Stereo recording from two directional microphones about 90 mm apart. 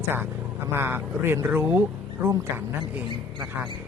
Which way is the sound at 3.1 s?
60° right (ahead or behind).